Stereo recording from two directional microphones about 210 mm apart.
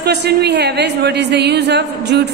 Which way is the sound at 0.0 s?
50° right (ahead or behind).